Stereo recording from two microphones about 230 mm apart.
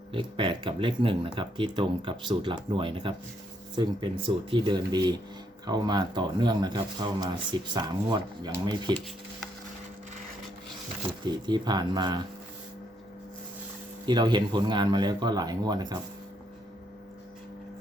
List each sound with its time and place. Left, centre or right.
0.1 s speech: right
11.3 s speech: centre
14.0 s speech: centre